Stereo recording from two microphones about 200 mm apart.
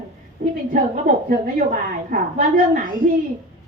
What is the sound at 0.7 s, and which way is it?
A woman's voice, 45° right (ahead or behind).